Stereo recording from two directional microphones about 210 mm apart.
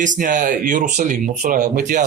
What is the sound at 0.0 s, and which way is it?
Speech, 40° right (ahead or behind).